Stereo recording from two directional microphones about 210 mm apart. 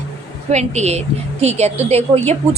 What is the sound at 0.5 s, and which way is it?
A woman's voice, 30° right (ahead or behind).